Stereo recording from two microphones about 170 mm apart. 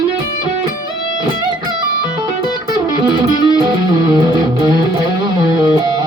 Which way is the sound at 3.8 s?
25° right (ahead or behind).